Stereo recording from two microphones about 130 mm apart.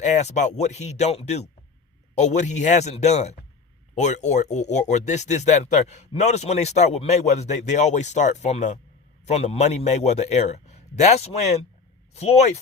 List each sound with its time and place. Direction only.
0.0 s speech: 60° left (ahead or behind)